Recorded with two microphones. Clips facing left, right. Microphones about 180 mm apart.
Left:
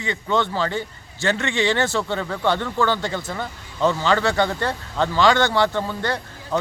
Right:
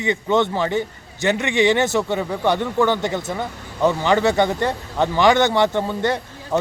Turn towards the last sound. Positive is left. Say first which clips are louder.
# right 3 dB
turn(degrees=-20)  # may be behind; listen again after turning